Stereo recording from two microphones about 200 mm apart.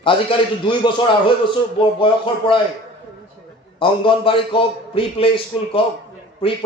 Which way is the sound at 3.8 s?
25° left (ahead or behind).